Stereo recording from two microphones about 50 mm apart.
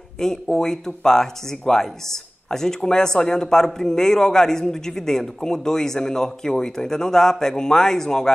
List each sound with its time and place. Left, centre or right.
0.2 s speech: centre